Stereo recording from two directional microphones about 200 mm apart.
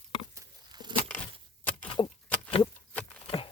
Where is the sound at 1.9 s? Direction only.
30° left (ahead or behind).